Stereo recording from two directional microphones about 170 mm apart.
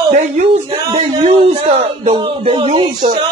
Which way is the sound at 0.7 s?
25° right (ahead or behind).